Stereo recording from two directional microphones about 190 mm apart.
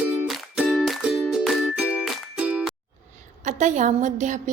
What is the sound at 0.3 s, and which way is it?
Music, centre (ahead or behind).